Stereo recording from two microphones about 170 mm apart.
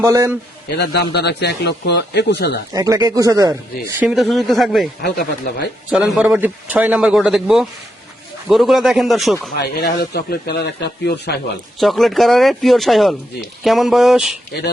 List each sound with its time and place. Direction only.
0.0 s a man's voice: 15° right (ahead or behind)
0.7 s speech: 80° left
2.7 s speech: 20° right (ahead or behind)
4.0 s a man's voice: centre (ahead or behind)
5.0 s speech: 70° left (ahead or behind)
6.1 s a man's voice: 10° right (ahead or behind)
9.6 s speech: 70° left (ahead or behind)
11.8 s a man's voice: centre (ahead or behind)